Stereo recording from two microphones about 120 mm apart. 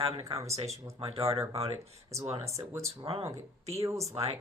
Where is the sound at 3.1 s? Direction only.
55° right (ahead or behind).